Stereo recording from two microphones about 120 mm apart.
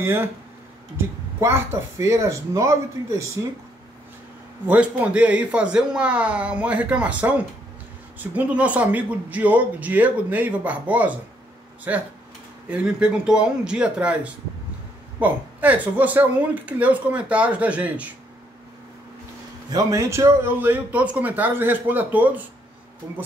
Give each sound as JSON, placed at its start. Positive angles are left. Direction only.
{"t": 0.0, "sound": "speech", "side_deg": -20}
{"t": 4.6, "sound": "speech", "side_deg": -10}
{"t": 19.7, "sound": "speech", "side_deg": -30}